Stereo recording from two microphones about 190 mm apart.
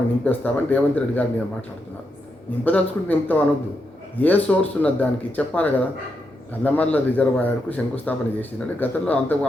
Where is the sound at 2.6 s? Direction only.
10° left (ahead or behind).